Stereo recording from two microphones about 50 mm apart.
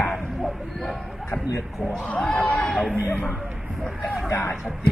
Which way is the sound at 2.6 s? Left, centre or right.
Centre.